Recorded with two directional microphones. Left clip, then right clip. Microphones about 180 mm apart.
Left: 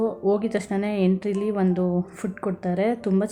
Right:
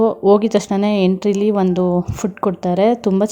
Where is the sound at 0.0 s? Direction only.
30° right (ahead or behind).